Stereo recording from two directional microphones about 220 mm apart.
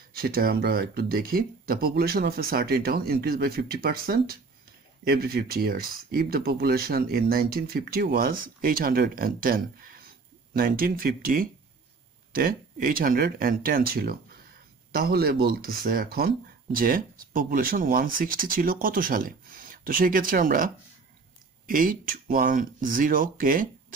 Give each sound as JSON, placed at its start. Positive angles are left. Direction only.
{"t": 0.1, "sound": "speech", "side_deg": -40}